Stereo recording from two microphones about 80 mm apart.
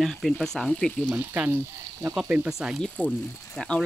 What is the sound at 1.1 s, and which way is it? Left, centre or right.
Speech, right.